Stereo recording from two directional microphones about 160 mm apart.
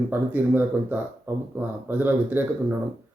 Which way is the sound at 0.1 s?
10° right (ahead or behind).